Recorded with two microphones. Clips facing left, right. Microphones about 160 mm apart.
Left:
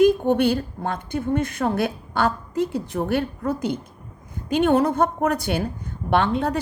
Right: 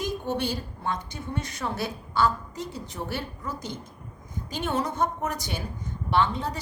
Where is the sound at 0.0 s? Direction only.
55° left (ahead or behind).